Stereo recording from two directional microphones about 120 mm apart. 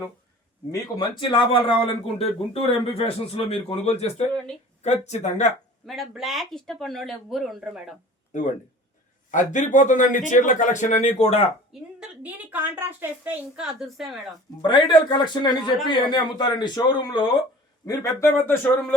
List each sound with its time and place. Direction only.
0.7 s speech: 35° left (ahead or behind); by 4.1 s 55° left (ahead or behind)
4.8 s speech: 70° left (ahead or behind)
5.8 s speech: centre (ahead or behind)
9.3 s speech: 90° left; by 11.4 s 65° left (ahead or behind)
11.7 s a woman's voice: 5° right (ahead or behind)
13.6 s speech: 5° right (ahead or behind)
14.7 s speech: 40° left (ahead or behind); by 18.9 s 15° left (ahead or behind)